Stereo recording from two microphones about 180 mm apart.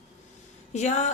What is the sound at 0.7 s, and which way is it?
Speech, 40° left (ahead or behind).